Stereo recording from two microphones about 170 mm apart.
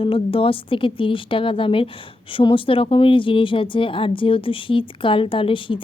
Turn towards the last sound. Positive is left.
turn(degrees=30)  # may be behind; listen again after turning